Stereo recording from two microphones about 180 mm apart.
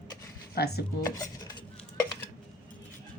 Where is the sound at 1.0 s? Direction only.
20° left (ahead or behind).